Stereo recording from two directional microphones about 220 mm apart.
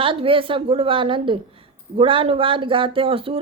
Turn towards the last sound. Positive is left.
turn(degrees=-25)  # may be behind; listen again after turning